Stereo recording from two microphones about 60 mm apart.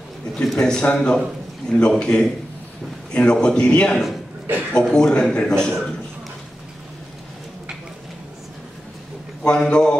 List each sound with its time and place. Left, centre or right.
0.4 s speech: centre
4.5 s speech: right
4.8 s speech: centre
9.4 s speech: centre